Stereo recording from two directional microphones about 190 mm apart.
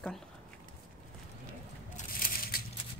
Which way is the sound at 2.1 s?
50° left (ahead or behind).